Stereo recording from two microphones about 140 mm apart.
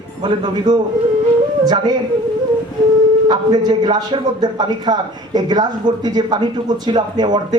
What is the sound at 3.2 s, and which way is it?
Speech, 30° right (ahead or behind).